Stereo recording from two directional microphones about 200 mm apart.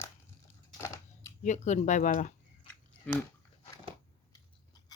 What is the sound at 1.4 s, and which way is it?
Speech, 35° left (ahead or behind).